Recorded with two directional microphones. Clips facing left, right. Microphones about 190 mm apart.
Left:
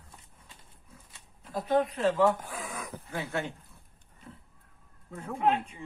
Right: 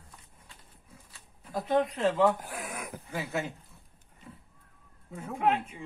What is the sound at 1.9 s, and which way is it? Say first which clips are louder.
Speech: even; 20° right (ahead or behind).